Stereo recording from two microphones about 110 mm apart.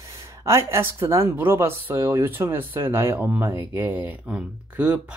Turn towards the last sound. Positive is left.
turn(degrees=-10)  # may be behind; listen again after turning